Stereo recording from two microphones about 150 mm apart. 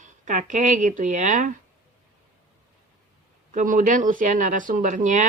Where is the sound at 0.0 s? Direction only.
55° right (ahead or behind).